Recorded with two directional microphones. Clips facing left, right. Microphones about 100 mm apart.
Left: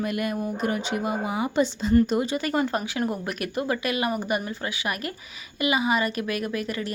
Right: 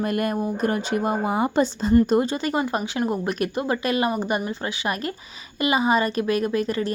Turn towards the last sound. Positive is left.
turn(degrees=-30)  # may be behind; listen again after turning